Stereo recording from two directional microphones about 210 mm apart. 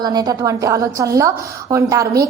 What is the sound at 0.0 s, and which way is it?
A woman's voice, 20° right (ahead or behind).